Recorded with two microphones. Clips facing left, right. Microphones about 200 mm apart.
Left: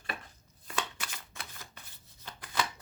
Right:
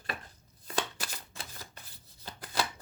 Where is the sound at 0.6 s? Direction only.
35° right (ahead or behind).